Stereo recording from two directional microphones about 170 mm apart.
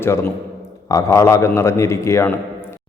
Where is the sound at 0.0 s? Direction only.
15° left (ahead or behind).